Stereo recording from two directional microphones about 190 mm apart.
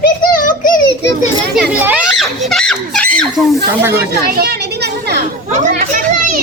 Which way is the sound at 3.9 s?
55° right (ahead or behind).